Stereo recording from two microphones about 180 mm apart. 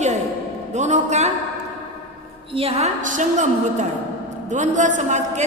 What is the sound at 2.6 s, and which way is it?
A woman's voice, 35° right (ahead or behind).